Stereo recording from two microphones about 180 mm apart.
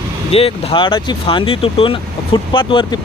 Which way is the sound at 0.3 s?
35° left (ahead or behind).